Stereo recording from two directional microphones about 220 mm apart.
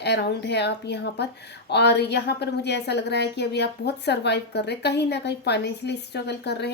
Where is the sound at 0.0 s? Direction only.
50° left (ahead or behind).